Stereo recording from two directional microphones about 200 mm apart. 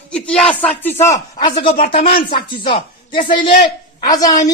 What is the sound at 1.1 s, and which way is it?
A man's voice, 20° left (ahead or behind).